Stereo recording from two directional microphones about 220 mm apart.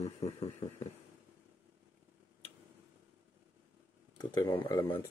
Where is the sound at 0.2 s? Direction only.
30° left (ahead or behind).